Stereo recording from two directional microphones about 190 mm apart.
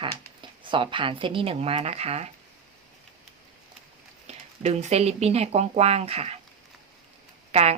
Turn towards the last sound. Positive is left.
turn(degrees=-35)  # may be behind; listen again after turning